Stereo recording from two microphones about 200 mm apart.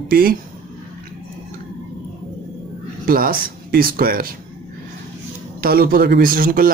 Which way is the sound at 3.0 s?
45° right (ahead or behind).